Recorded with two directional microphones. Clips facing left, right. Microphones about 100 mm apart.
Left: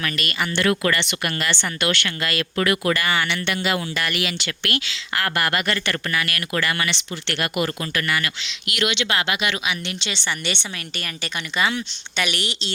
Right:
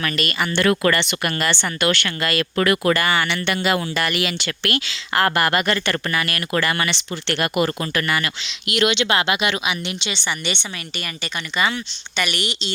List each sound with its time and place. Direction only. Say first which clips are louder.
0.0 s speech: right 3 dB; 40° right (ahead or behind); by 9.7 s 20° right (ahead or behind)
9.8 s speech: right 2 dB; 5° right (ahead or behind)